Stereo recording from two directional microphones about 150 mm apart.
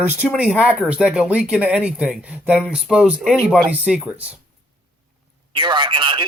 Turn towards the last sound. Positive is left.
turn(degrees=-30)  # may be behind; listen again after turning